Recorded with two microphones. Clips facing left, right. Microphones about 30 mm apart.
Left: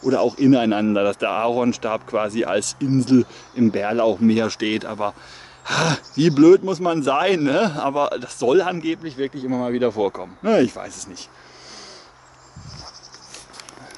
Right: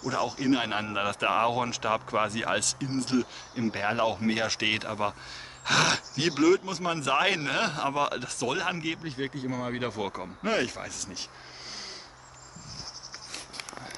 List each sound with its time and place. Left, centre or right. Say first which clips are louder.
0.1 s speech: left 11 dB; centre